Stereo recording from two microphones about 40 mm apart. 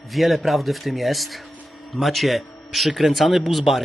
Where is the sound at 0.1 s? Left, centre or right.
Centre.